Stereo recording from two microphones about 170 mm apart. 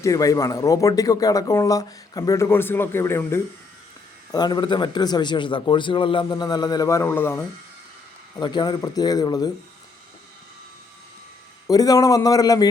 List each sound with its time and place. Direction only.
0.0 s speech: 20° left (ahead or behind)
4.3 s speech: 25° left (ahead or behind)
8.4 s speech: 25° left (ahead or behind)
11.7 s speech: 20° left (ahead or behind)